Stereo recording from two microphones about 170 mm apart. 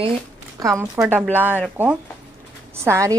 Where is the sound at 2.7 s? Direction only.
15° right (ahead or behind).